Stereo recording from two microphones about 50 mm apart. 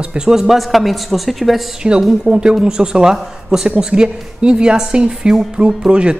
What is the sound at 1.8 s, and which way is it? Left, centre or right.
A woman's voice, centre.